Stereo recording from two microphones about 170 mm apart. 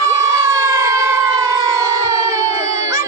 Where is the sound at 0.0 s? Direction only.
20° right (ahead or behind).